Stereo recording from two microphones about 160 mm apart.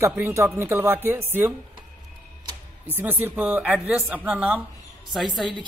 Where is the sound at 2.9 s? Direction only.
10° right (ahead or behind).